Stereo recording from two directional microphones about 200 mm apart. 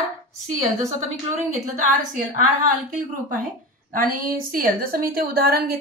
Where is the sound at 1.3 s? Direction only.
40° right (ahead or behind).